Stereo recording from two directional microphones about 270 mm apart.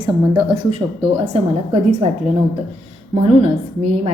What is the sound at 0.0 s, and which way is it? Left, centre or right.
Speech, centre.